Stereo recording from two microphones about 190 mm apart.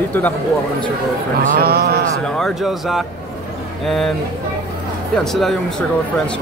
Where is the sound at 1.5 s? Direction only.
55° right (ahead or behind).